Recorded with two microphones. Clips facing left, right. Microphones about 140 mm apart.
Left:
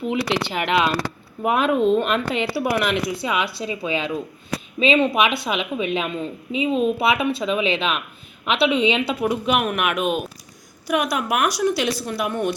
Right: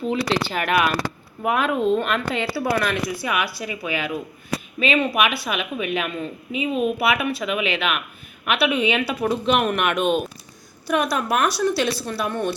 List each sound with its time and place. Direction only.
0.0 s speech: 15° left (ahead or behind)